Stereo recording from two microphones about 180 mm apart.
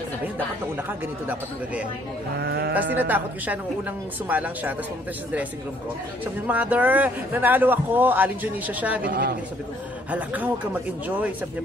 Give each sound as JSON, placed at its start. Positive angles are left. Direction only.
{"t": 2.3, "sound": "a man's voice", "side_deg": -65}
{"t": 2.7, "sound": "a man's voice", "side_deg": -10}
{"t": 6.4, "sound": "a man's voice", "side_deg": -10}
{"t": 9.0, "sound": "a man's voice", "side_deg": -55}
{"t": 10.1, "sound": "a man's voice", "side_deg": -10}